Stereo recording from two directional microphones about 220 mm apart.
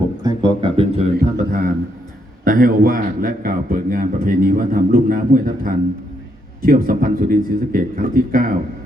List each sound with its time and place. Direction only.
0.2 s a sound: 20° right (ahead or behind)
1.1 s mantra: 40° right (ahead or behind)
2.4 s a man's voice: 40° right (ahead or behind)